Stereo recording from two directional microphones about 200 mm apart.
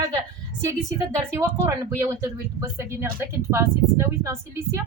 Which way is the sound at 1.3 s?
15° right (ahead or behind).